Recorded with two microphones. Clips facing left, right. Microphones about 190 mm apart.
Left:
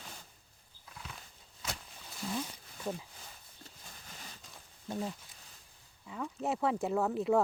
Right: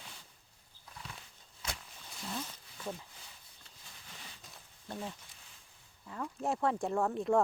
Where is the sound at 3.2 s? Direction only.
45° left (ahead or behind).